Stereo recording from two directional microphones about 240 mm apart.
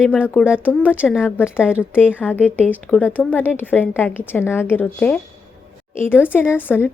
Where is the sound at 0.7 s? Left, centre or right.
Centre.